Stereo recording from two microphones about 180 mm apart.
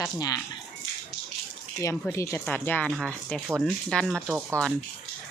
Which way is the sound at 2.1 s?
15° left (ahead or behind).